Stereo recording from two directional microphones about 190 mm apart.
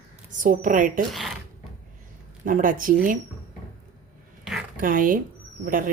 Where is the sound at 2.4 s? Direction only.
45° right (ahead or behind).